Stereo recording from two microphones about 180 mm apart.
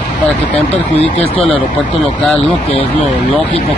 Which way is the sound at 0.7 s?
35° left (ahead or behind).